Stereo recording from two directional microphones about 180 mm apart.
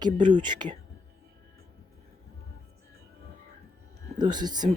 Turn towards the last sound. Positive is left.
turn(degrees=-25)  # may be behind; listen again after turning